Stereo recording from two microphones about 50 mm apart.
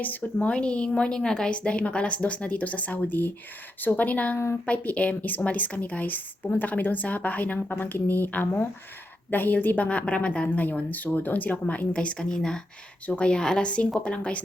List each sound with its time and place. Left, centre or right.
0.0 s a woman's voice: left
11.9 s a woman's voice: centre